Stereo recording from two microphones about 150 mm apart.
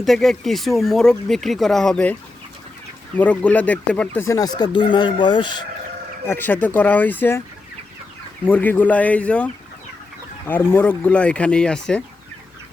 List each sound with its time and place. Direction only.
0.0 s speech: centre (ahead or behind)
3.2 s speech: 10° left (ahead or behind); by 5.5 s 30° left (ahead or behind)
6.2 s speech: 15° left (ahead or behind)
8.4 s speech: 10° left (ahead or behind)